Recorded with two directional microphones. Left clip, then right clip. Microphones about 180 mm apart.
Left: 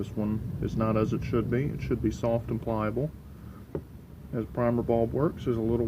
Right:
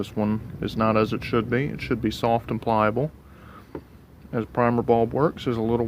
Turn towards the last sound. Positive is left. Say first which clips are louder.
# right 4 dB
turn(degrees=-50)  # may be behind; listen again after turning